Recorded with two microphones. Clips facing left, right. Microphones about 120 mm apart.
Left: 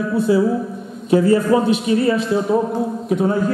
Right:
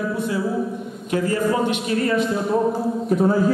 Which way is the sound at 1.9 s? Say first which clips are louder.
Left 5 dB; 20° left (ahead or behind).